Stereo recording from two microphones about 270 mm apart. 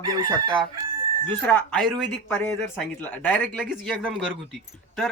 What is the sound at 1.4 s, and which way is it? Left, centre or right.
Speech, centre.